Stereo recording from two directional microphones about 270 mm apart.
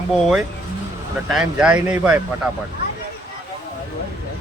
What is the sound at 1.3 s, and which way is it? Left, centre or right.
Speech, centre.